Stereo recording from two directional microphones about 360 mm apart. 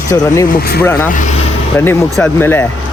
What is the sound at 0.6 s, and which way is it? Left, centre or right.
Speech, left.